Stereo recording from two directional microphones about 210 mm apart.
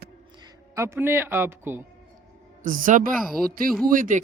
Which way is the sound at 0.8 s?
10° right (ahead or behind).